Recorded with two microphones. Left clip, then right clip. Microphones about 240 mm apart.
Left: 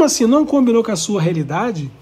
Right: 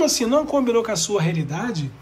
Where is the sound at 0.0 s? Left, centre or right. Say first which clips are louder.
Left 6 dB; centre.